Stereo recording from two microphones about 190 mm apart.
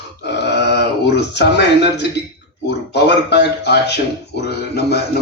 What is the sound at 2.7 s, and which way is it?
Speech, 65° left (ahead or behind).